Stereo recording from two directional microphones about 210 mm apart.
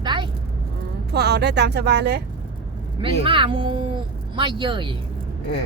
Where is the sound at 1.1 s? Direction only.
50° right (ahead or behind).